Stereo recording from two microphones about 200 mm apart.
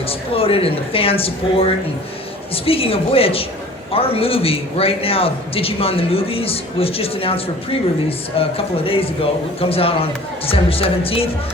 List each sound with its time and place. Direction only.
0.1 s a man's voice: 30° left (ahead or behind)